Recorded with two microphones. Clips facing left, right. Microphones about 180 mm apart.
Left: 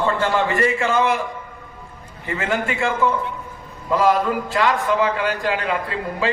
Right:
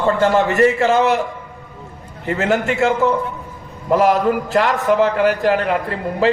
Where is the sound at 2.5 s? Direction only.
75° right (ahead or behind).